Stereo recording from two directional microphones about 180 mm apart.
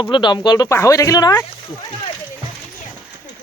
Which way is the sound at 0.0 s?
25° left (ahead or behind).